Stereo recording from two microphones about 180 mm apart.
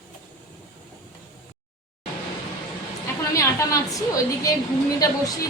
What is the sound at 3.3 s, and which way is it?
A woman's voice, 20° left (ahead or behind).